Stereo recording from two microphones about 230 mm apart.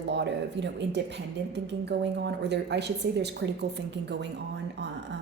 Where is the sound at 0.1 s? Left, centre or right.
Right.